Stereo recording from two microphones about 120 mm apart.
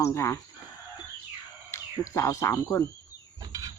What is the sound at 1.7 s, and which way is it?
Speech, 25° left (ahead or behind).